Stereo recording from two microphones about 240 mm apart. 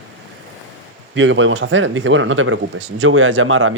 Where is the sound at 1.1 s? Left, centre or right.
Right.